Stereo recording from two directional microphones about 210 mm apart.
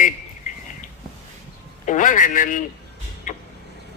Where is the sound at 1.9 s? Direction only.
40° left (ahead or behind).